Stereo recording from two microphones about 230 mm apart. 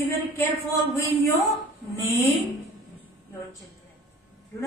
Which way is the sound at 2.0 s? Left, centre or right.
Centre.